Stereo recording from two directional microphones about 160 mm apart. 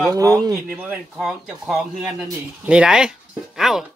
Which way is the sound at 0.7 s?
5° right (ahead or behind).